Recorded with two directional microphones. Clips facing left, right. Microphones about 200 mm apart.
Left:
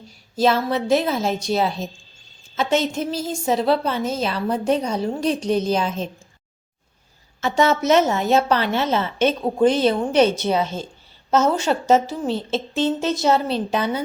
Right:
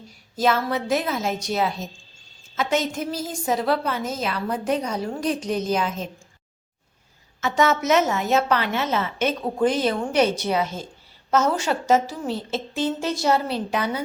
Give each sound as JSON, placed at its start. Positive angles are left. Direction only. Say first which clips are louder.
{"t": 0.3, "sound": "a woman's voice", "louder": "left 3 dB", "side_deg": 30}
{"t": 7.4, "sound": "a woman's voice", "louder": "left 3 dB", "side_deg": 30}